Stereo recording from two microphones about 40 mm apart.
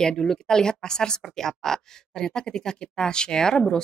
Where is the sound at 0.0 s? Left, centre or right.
Centre.